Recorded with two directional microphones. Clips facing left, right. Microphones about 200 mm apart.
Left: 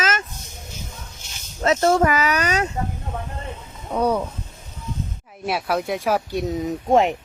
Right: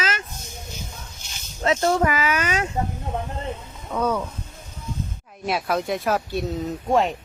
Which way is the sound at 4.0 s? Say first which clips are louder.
Left 3 dB; 15° left (ahead or behind).